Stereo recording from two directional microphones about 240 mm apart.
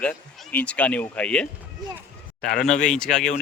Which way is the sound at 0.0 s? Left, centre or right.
Centre.